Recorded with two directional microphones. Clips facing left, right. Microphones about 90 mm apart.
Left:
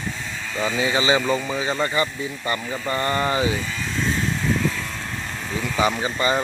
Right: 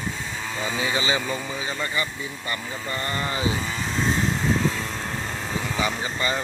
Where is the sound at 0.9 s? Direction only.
30° left (ahead or behind).